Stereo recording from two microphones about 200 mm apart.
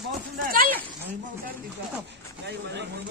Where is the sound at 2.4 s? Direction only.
60° right (ahead or behind).